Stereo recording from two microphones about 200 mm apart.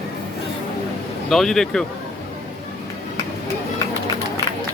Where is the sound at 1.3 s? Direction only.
Centre (ahead or behind).